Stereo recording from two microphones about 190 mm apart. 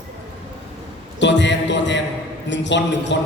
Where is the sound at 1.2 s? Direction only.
70° left (ahead or behind).